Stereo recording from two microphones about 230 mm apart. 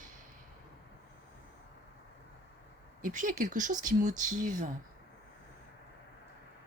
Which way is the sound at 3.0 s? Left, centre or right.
Right.